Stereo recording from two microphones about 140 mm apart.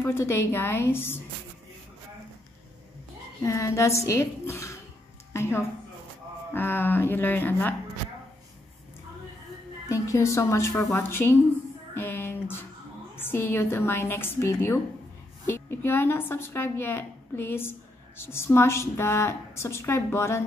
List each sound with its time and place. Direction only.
0.0 s a woman's voice: 15° left (ahead or behind)
3.4 s a woman's voice: 20° left (ahead or behind)
5.3 s a sound: 20° left (ahead or behind)
6.5 s a woman's voice: 15° left (ahead or behind)
9.8 s a woman's voice: 20° left (ahead or behind)
11.9 s a sound: 15° left (ahead or behind)
13.1 s a woman's voice: 15° left (ahead or behind)